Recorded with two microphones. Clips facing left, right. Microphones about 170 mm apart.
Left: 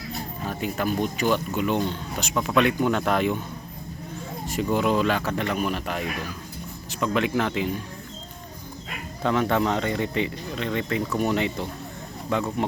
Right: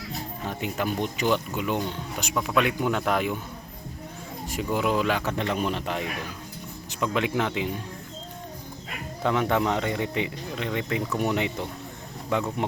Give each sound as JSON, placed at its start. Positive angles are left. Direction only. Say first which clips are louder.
{"t": 0.4, "sound": "speech", "louder": "left 2 dB", "side_deg": -20}
{"t": 4.4, "sound": "speech", "louder": "left 3 dB", "side_deg": -10}
{"t": 9.2, "sound": "speech", "louder": "left 1 dB", "side_deg": -15}